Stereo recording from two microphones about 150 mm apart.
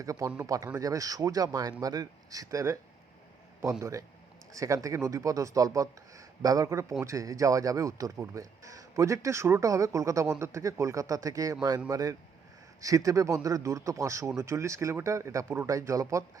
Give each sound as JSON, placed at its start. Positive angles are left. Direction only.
{"t": 0.0, "sound": "speech", "side_deg": -20}